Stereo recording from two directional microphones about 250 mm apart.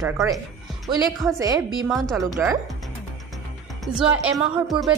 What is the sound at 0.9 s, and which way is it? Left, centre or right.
Speech, centre.